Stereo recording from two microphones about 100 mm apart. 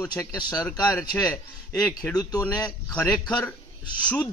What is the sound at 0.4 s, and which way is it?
Speech, 40° left (ahead or behind).